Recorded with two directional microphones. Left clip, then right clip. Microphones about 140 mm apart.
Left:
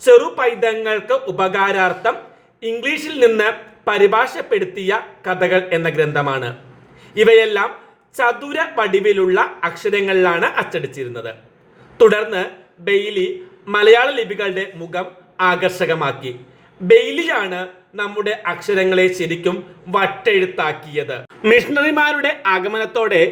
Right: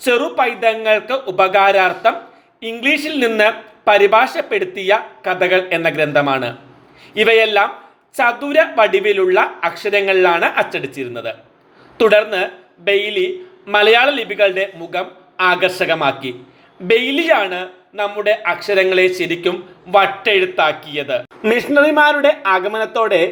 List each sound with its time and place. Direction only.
0.0 s a man's voice: 30° right (ahead or behind)
21.4 s a man's voice: 10° right (ahead or behind)